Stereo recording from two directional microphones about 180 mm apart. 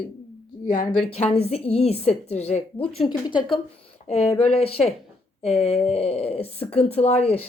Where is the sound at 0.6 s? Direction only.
55° left (ahead or behind).